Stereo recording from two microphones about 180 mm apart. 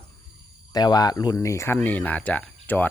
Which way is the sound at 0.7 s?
20° left (ahead or behind).